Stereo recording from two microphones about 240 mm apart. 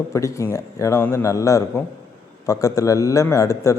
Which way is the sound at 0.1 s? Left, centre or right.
Centre.